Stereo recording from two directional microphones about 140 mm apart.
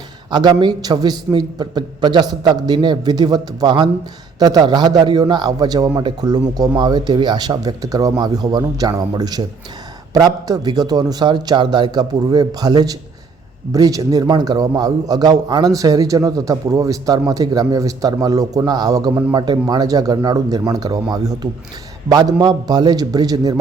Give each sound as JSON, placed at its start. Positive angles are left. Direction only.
{"t": 0.3, "sound": "a man's voice", "side_deg": -30}